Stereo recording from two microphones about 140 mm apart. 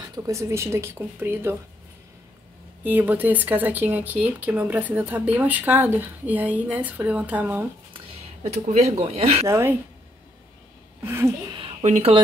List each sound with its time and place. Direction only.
0.1 s speech: 20° right (ahead or behind)
2.8 s speech: 15° right (ahead or behind)
7.9 s speech: 45° right (ahead or behind)
9.5 s speech: 20° right (ahead or behind)
11.0 s speech: 15° right (ahead or behind)
11.8 s speech: 50° right (ahead or behind)